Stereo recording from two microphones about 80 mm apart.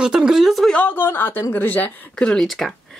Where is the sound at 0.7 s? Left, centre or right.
Centre.